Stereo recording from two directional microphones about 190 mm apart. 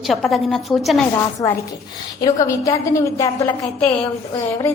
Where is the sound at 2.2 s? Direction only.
20° left (ahead or behind).